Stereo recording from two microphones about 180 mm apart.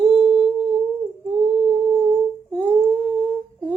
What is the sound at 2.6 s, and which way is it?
Humming, 10° right (ahead or behind).